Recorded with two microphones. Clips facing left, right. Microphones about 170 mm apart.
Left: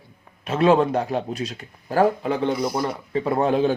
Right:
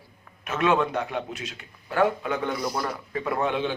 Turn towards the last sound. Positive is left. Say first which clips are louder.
# left 6 dB
turn(degrees=40)  # may be behind; listen again after turning